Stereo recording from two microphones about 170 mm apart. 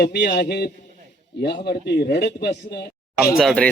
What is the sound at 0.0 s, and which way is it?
Speech, 80° left.